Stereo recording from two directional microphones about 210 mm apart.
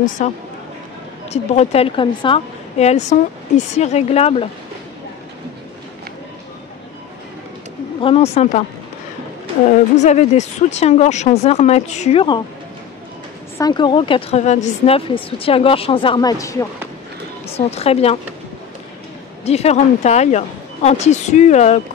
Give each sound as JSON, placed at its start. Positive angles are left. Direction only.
{"t": 0.2, "sound": "a woman's voice", "side_deg": 35}
{"t": 8.0, "sound": "a woman's voice", "side_deg": 25}
{"t": 9.7, "sound": "speech", "side_deg": 35}
{"t": 13.6, "sound": "a woman's voice", "side_deg": 20}
{"t": 17.5, "sound": "a woman's voice", "side_deg": 30}
{"t": 19.4, "sound": "speech", "side_deg": 30}